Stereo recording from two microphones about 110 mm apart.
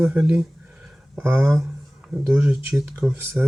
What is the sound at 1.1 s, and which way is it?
Speech, 20° right (ahead or behind).